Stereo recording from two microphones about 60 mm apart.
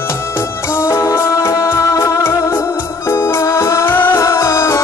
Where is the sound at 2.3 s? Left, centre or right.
Left.